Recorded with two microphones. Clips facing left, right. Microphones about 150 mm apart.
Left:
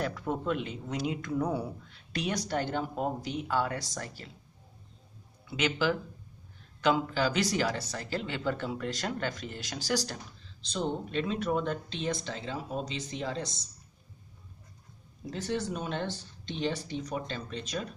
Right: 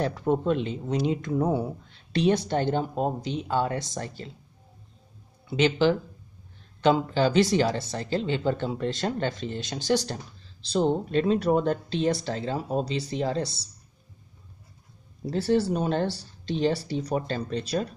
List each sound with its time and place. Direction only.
0.0 s speech: 30° right (ahead or behind)
5.5 s speech: 30° right (ahead or behind)
15.2 s speech: 35° right (ahead or behind)